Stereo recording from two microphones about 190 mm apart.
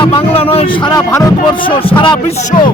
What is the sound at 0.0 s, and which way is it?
Speech, 30° left (ahead or behind).